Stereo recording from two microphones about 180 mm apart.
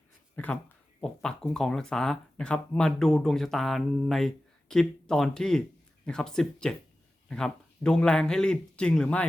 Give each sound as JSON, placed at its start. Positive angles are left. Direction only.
{"t": 0.3, "sound": "speech", "side_deg": 10}